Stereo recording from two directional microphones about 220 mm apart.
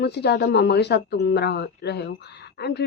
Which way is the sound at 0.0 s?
50° left (ahead or behind).